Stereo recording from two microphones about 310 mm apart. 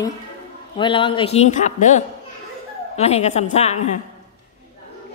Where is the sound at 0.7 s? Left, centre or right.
Centre.